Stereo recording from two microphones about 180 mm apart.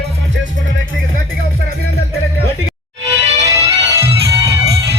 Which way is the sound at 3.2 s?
40° right (ahead or behind).